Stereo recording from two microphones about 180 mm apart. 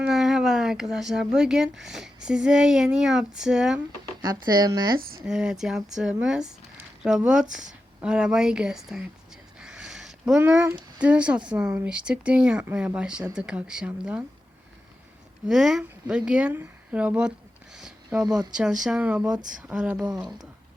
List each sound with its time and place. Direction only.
0.0 s speech: centre (ahead or behind)
4.3 s speech: 20° right (ahead or behind)
5.2 s speech: 5° right (ahead or behind)
9.6 s a sound: 5° right (ahead or behind)
11.0 s speech: 5° right (ahead or behind)
15.4 s speech: centre (ahead or behind)
17.7 s a sound: 5° right (ahead or behind)
18.5 s speech: 5° right (ahead or behind)